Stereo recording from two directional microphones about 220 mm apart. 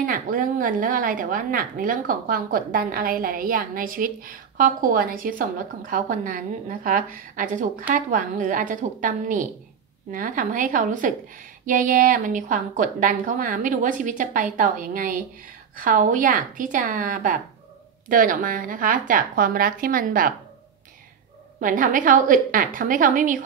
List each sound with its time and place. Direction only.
0.0 s a woman's voice: 40° right (ahead or behind)
21.5 s a woman's voice: 40° right (ahead or behind)